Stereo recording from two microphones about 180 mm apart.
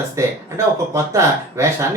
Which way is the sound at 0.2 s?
15° right (ahead or behind).